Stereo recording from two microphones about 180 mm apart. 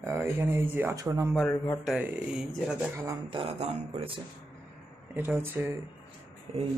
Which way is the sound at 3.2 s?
30° right (ahead or behind).